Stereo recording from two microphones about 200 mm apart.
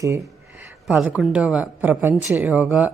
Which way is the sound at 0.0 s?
15° right (ahead or behind).